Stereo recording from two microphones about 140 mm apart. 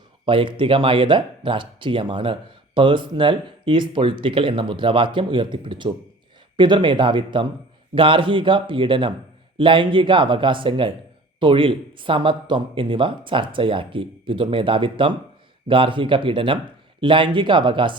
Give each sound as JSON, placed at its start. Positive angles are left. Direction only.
{"t": 0.3, "sound": "speech", "side_deg": -35}